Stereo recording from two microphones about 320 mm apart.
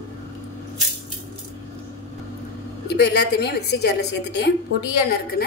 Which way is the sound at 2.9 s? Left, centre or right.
Left.